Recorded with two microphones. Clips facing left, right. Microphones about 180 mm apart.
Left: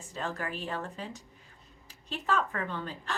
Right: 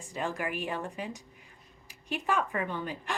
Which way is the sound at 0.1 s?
10° right (ahead or behind).